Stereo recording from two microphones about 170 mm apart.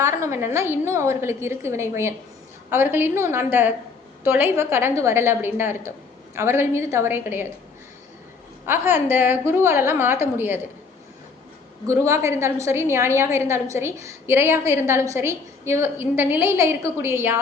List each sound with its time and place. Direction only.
0.0 s a woman's voice: 15° right (ahead or behind)
8.6 s a woman's voice: 15° right (ahead or behind)
11.9 s a woman's voice: 15° right (ahead or behind)